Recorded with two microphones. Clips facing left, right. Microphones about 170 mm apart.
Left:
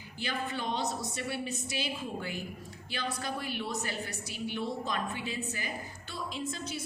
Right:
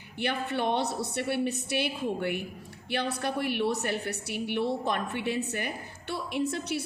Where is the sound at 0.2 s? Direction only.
60° right (ahead or behind).